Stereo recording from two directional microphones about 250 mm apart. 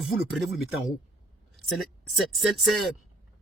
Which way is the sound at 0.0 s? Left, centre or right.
Centre.